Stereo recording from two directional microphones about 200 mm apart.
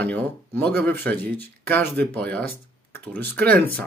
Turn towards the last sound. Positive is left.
turn(degrees=5)  # may be behind; listen again after turning